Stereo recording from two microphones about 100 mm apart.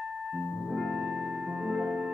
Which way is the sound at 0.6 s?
Centre (ahead or behind).